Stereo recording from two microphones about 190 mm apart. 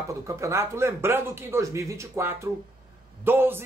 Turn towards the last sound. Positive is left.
turn(degrees=-10)  # may be behind; listen again after turning